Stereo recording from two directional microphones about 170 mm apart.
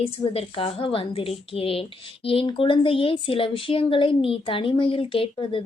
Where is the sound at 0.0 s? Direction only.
35° left (ahead or behind).